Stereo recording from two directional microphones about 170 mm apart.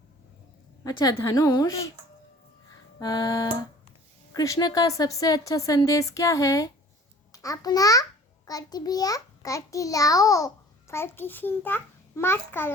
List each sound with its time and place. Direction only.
0.9 s a child's voice: 25° left (ahead or behind)
3.0 s a child's voice: 20° left (ahead or behind)